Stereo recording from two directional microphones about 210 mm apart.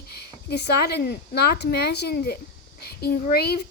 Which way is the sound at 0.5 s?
50° left (ahead or behind).